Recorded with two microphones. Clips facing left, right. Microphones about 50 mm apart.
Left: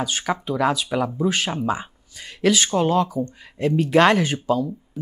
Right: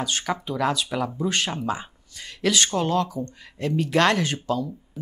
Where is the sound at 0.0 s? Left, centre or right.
Centre.